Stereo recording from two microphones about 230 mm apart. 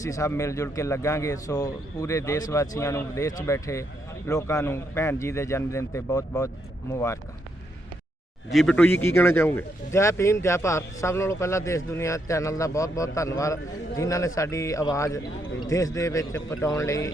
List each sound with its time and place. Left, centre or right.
0.0 s speech: centre
8.4 s speech: centre